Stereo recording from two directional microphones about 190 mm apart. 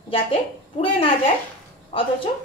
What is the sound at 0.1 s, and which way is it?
A woman's voice, 30° left (ahead or behind).